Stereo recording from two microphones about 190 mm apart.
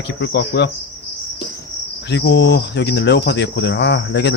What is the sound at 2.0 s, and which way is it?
Speech, 65° left (ahead or behind).